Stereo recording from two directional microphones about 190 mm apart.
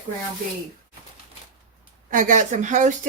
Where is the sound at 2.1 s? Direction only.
45° right (ahead or behind).